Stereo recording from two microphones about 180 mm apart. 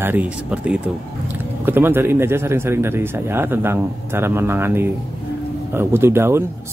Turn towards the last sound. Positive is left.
turn(degrees=-15)  # may be behind; listen again after turning